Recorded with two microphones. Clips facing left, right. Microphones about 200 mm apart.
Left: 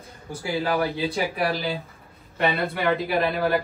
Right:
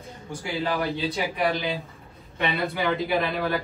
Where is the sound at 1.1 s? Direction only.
5° left (ahead or behind).